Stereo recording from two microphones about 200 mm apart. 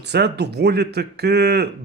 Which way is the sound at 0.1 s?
55° right (ahead or behind).